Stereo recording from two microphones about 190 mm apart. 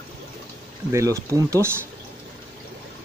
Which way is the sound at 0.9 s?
15° right (ahead or behind).